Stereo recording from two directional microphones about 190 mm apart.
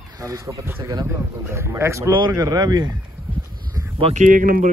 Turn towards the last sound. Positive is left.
turn(degrees=-45)  # may be behind; listen again after turning